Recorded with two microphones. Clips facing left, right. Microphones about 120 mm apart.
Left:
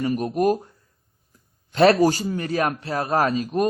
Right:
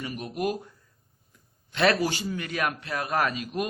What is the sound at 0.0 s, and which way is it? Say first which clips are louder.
Speech: left 9 dB; 40° left (ahead or behind).